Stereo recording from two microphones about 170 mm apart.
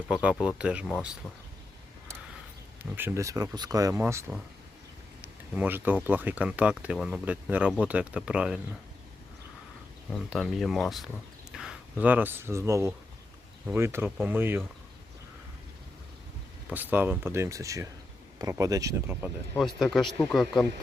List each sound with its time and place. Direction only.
0.1 s speech: 5° right (ahead or behind)
2.9 s speech: 15° right (ahead or behind)
5.2 s a sound: 10° right (ahead or behind)
6.1 s speech: 10° right (ahead or behind)
10.2 s speech: centre (ahead or behind)
16.7 s speech: 10° right (ahead or behind)
19.5 s speech: centre (ahead or behind)